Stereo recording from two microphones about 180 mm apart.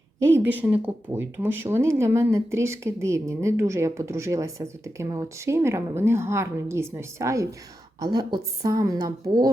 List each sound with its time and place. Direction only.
0.2 s a woman's voice: 15° right (ahead or behind)